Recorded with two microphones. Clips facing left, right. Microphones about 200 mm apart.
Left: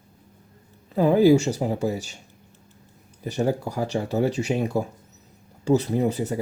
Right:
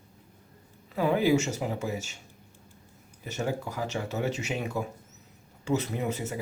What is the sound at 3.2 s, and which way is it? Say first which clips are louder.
Speech: left 7 dB; 35° left (ahead or behind).